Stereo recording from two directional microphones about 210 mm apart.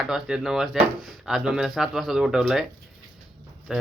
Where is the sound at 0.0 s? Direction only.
5° right (ahead or behind).